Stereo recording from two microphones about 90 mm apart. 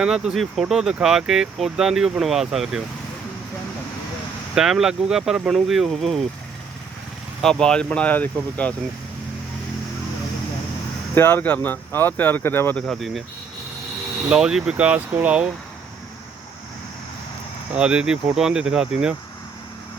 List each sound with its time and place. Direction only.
0.0 s speech: 5° right (ahead or behind)
4.5 s speech: 5° right (ahead or behind)
7.4 s speech: 10° left (ahead or behind)
11.1 s speech: 20° left (ahead or behind)
12.7 s speech: centre (ahead or behind)
14.3 s speech: 5° right (ahead or behind)
17.7 s speech: 10° right (ahead or behind)